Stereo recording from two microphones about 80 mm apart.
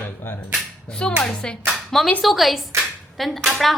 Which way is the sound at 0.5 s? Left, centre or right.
Centre.